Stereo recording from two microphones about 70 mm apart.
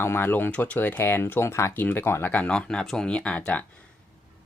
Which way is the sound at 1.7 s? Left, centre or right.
Left.